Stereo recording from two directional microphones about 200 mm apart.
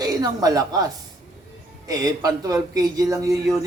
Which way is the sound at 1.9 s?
20° right (ahead or behind).